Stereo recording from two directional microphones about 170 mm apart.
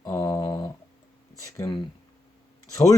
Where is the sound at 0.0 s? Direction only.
20° left (ahead or behind).